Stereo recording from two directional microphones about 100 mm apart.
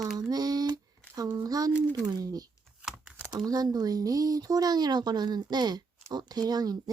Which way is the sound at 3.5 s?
40° right (ahead or behind).